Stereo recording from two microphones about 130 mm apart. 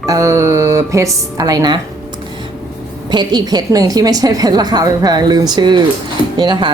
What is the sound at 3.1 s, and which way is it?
A woman's voice, 35° right (ahead or behind).